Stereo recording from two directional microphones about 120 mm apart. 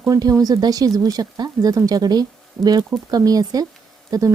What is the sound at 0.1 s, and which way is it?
Speech, 30° right (ahead or behind).